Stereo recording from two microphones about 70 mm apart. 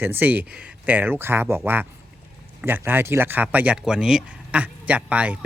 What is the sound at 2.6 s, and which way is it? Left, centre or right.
A man's voice, right.